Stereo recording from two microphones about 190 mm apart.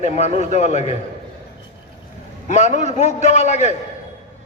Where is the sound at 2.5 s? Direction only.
40° left (ahead or behind).